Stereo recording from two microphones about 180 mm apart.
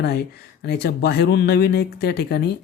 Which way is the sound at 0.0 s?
65° left (ahead or behind).